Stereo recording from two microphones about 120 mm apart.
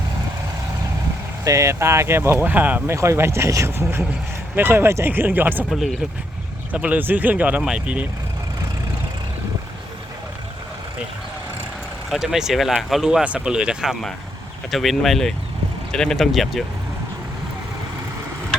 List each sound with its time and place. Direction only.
1.5 s speech: 25° right (ahead or behind)
5.7 s speech: centre (ahead or behind)
6.7 s speech: 10° right (ahead or behind)
12.1 s speech: 5° right (ahead or behind)